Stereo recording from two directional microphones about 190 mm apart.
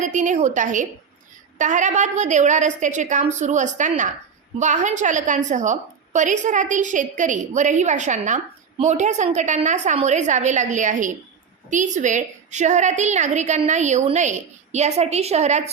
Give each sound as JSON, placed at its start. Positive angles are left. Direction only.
{"t": 0.0, "sound": "a woman's voice", "side_deg": -40}